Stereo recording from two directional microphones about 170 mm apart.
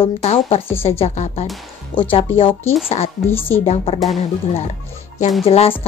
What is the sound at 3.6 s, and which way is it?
Speech, 35° left (ahead or behind).